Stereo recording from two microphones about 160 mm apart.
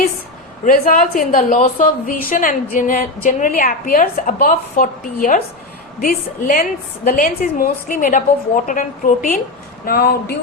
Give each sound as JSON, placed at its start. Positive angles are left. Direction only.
{"t": 0.6, "sound": "a woman's voice", "side_deg": 65}
{"t": 9.8, "sound": "speech", "side_deg": 70}